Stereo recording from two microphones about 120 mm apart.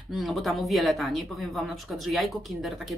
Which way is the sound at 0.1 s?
Centre (ahead or behind).